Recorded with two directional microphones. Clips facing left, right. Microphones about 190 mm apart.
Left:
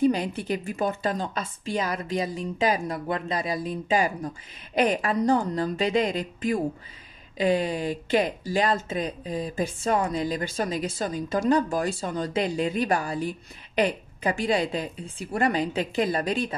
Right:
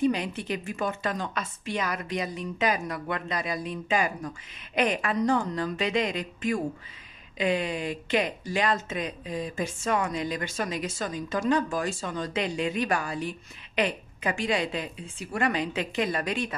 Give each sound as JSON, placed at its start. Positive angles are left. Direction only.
{"t": 0.0, "sound": "speech", "side_deg": 35}